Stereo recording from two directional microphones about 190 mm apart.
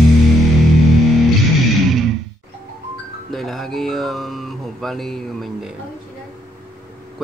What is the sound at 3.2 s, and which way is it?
Music, centre (ahead or behind).